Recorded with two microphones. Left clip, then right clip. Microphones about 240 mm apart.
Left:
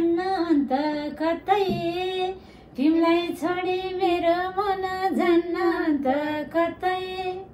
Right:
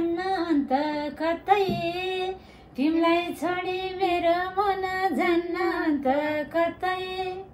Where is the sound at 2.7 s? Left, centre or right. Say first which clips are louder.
Left 2 dB; centre.